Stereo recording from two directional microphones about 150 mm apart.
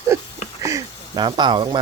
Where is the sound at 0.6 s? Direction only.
20° right (ahead or behind).